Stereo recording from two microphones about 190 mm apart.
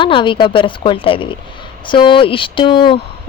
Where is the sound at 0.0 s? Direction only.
25° left (ahead or behind).